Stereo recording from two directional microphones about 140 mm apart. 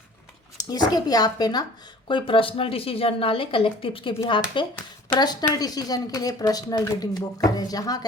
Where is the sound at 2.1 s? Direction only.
40° left (ahead or behind).